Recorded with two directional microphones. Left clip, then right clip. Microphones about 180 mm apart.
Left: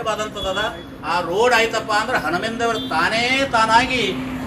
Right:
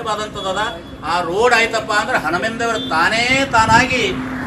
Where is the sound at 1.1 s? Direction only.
10° left (ahead or behind).